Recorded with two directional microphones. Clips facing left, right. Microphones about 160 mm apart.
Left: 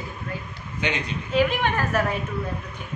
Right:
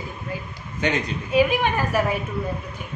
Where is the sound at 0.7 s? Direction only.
45° right (ahead or behind).